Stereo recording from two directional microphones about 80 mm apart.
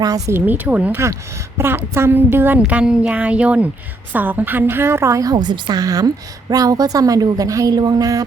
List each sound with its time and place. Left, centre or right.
0.3 s a woman's voice: right
1.5 s a woman's voice: right
2.6 s a woman's voice: centre; by 8.2 s right